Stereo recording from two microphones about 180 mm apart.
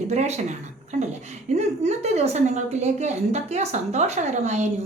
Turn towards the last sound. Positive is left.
turn(degrees=-40)  # may be behind; listen again after turning